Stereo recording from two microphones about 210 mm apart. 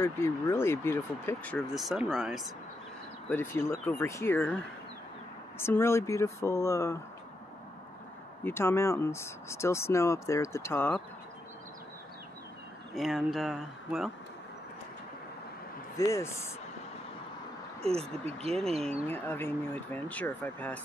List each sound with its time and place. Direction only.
0.0 s speech: 10° left (ahead or behind)
3.3 s speech: 10° left (ahead or behind)
5.6 s speech: 10° left (ahead or behind)
8.5 s speech: 10° left (ahead or behind)
12.9 s speech: centre (ahead or behind)
16.0 s speech: 15° left (ahead or behind)
18.5 s speech: 30° right (ahead or behind)
19.0 s speech: 10° left (ahead or behind)